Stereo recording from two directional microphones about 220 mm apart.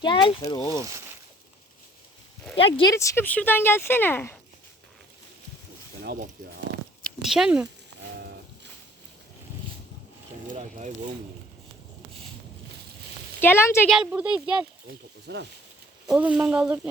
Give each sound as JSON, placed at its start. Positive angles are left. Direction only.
{"t": 0.0, "sound": "speech", "side_deg": 20}
{"t": 2.6, "sound": "speech", "side_deg": 25}
{"t": 2.9, "sound": "speech", "side_deg": 10}
{"t": 6.0, "sound": "a sound", "side_deg": -45}
{"t": 7.0, "sound": "speech", "side_deg": 0}
{"t": 10.5, "sound": "speech", "side_deg": -35}
{"t": 13.4, "sound": "speech", "side_deg": 10}
{"t": 13.9, "sound": "speech", "side_deg": -5}
{"t": 15.3, "sound": "speech", "side_deg": -50}
{"t": 16.0, "sound": "speech", "side_deg": -5}